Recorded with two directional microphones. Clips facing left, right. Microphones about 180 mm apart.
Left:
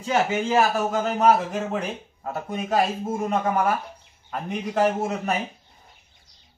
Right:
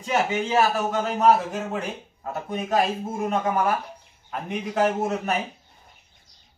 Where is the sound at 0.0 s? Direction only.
Centre (ahead or behind).